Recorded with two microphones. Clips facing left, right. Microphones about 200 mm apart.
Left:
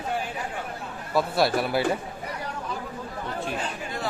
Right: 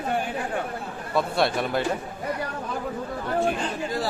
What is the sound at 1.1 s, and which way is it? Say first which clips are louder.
Speech: left 1 dB; 5° left (ahead or behind).